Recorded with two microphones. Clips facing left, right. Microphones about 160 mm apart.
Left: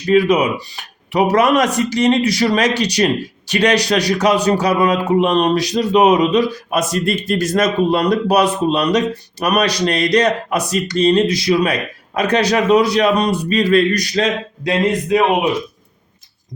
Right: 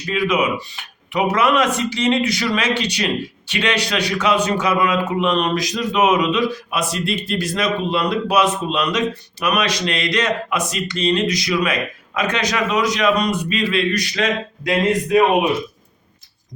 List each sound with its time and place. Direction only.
0.1 s speech: 35° left (ahead or behind)